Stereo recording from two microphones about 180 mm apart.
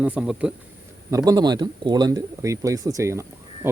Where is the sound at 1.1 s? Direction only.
20° right (ahead or behind).